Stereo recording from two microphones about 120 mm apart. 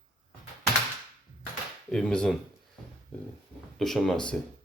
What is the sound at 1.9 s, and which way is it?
Speech, 5° left (ahead or behind).